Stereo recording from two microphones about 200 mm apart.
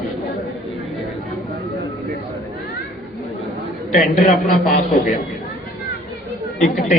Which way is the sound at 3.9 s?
40° left (ahead or behind).